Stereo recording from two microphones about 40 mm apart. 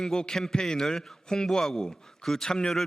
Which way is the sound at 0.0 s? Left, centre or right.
Centre.